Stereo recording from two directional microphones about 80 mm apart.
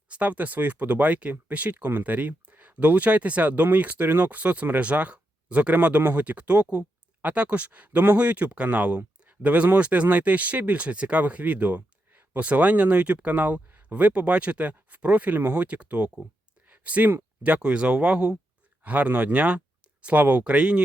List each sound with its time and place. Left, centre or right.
0.1 s speech: centre